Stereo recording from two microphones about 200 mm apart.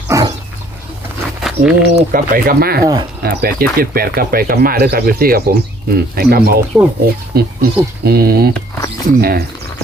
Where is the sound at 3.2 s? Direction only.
50° right (ahead or behind).